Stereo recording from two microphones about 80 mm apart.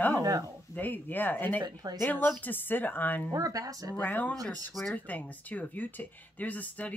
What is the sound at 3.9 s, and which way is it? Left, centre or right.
Speech, left.